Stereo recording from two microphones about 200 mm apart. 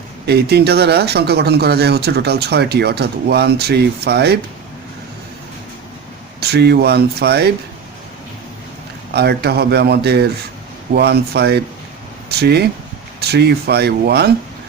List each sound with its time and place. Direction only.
0.3 s speech: 55° right (ahead or behind)
6.4 s speech: 55° right (ahead or behind)
9.1 s speech: 55° right (ahead or behind)